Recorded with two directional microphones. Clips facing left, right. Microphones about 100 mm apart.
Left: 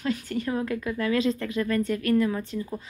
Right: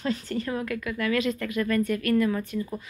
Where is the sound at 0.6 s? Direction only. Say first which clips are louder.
Left 1 dB; 30° left (ahead or behind).